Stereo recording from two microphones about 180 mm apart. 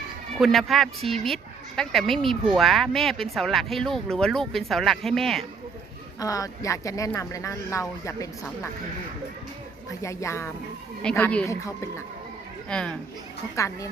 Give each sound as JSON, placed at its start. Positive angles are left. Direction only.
{"t": 0.3, "sound": "speech", "side_deg": 0}
{"t": 6.1, "sound": "speech", "side_deg": 20}
{"t": 10.0, "sound": "speech", "side_deg": 15}
{"t": 12.6, "sound": "speech", "side_deg": 5}
{"t": 13.6, "sound": "speech", "side_deg": 15}